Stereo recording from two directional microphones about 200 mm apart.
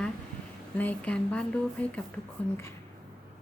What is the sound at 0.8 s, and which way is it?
Speech, 10° left (ahead or behind).